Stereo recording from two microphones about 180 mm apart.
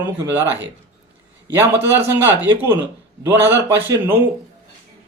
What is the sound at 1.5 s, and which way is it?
A man's voice, 10° right (ahead or behind).